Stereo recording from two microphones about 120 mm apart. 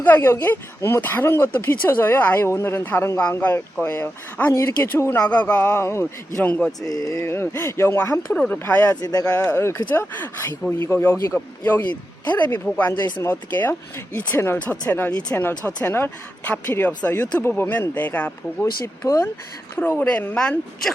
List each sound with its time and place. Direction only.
0.0 s speech: 15° left (ahead or behind)
5.2 s speech: 10° left (ahead or behind)
6.8 s speech: 30° left (ahead or behind)
11.9 s speech: 35° left (ahead or behind)
12.5 s speech: 15° left (ahead or behind)